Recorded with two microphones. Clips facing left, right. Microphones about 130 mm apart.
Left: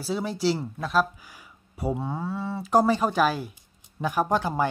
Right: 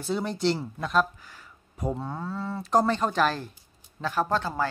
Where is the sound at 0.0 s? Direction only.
Centre (ahead or behind).